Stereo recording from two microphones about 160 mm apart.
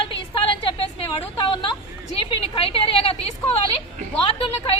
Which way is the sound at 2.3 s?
35° left (ahead or behind).